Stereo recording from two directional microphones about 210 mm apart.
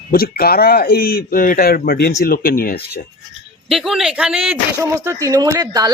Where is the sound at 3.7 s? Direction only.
Centre (ahead or behind).